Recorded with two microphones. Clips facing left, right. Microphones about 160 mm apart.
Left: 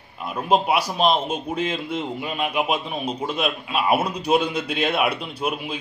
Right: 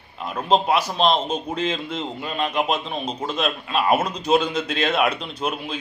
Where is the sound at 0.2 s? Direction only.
10° left (ahead or behind).